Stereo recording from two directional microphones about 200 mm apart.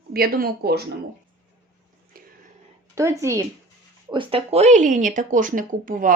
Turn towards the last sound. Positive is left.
turn(degrees=-45)  # may be behind; listen again after turning